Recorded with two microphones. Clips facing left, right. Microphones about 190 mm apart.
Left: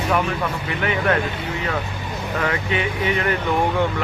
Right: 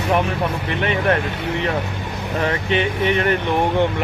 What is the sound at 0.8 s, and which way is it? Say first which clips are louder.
Speech: right 2 dB; 25° right (ahead or behind).